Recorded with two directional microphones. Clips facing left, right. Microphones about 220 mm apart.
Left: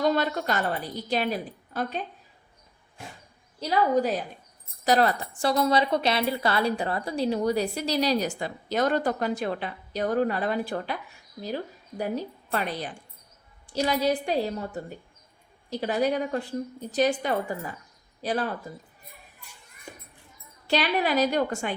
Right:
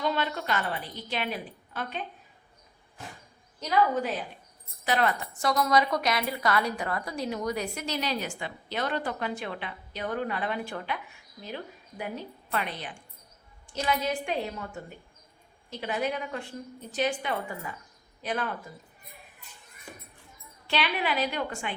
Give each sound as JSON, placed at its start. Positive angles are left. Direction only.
{"t": 0.0, "sound": "a woman's voice", "side_deg": 40}
{"t": 3.6, "sound": "a woman's voice", "side_deg": 35}
{"t": 20.7, "sound": "a woman's voice", "side_deg": 40}